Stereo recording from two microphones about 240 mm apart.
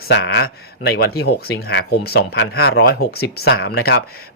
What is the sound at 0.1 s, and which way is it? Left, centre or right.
A man's voice, left.